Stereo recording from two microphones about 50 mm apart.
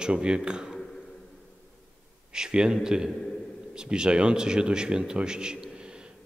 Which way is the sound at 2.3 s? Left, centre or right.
Centre.